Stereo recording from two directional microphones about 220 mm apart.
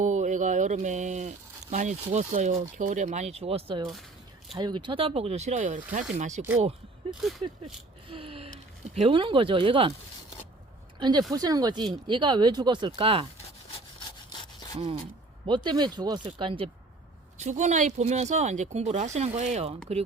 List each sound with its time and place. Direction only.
0.0 s a sound: 35° right (ahead or behind)
1.7 s speech: 35° right (ahead or behind)
7.1 s a sound: centre (ahead or behind)
8.1 s speech: 25° right (ahead or behind)
11.3 s speech: 15° right (ahead or behind)
15.4 s speech: 20° right (ahead or behind)